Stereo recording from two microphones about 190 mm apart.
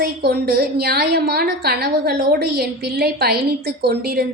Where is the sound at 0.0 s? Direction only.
60° right (ahead or behind).